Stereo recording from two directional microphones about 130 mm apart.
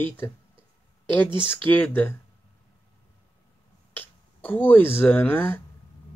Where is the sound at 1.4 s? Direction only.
15° left (ahead or behind).